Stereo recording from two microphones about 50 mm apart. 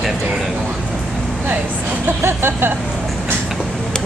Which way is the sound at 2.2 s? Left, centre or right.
Right.